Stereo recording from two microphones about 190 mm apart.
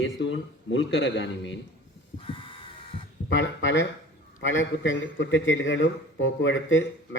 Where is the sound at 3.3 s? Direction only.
75° left (ahead or behind).